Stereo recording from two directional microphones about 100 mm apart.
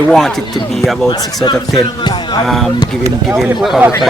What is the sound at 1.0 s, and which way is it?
Speech, 45° left (ahead or behind).